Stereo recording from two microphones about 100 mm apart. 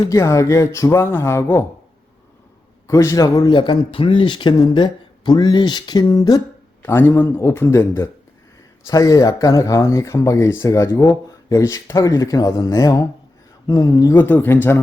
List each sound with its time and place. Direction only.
0.1 s speech: 30° left (ahead or behind)
2.8 s speech: 30° left (ahead or behind)
3.5 s speech: 50° left (ahead or behind)
6.8 s speech: 25° left (ahead or behind)
14.2 s speech: 20° left (ahead or behind)